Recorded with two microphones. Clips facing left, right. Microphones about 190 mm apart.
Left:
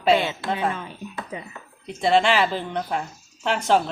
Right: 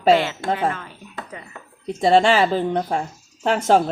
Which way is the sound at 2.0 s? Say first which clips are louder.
Right 4 dB; 40° right (ahead or behind).